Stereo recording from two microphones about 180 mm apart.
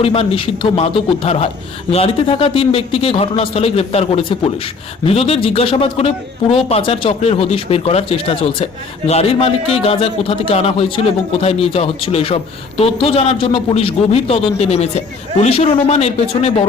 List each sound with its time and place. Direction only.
0.0 s speech: 30° left (ahead or behind)